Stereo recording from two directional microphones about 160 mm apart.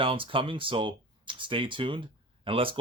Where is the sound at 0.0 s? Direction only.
35° right (ahead or behind).